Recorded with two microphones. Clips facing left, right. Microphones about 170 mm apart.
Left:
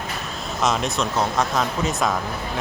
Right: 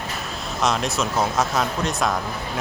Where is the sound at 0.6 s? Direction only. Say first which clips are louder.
Even; centre (ahead or behind).